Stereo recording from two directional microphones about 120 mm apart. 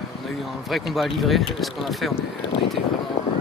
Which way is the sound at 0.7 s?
Centre (ahead or behind).